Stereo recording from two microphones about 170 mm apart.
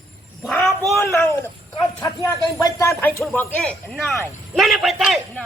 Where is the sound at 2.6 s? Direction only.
15° left (ahead or behind); by 5.4 s centre (ahead or behind).